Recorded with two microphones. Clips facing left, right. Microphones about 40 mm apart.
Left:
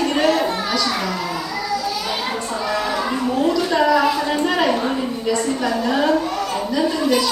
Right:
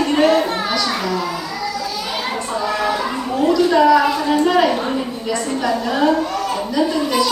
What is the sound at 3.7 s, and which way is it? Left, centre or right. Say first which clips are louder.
Speech: right 2 dB; centre.